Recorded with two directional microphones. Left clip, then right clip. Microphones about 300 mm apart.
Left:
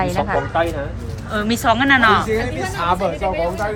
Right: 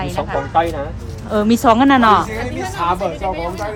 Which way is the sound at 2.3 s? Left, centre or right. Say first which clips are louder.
Left 3 dB; right.